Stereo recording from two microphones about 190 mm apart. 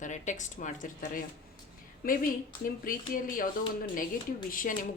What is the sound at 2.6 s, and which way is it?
Speech, 45° left (ahead or behind).